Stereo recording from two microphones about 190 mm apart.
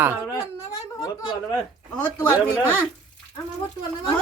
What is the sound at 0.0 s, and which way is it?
Speech, 10° right (ahead or behind).